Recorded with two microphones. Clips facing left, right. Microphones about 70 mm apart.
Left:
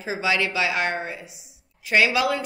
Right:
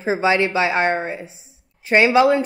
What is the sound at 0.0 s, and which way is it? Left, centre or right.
A woman's voice, right.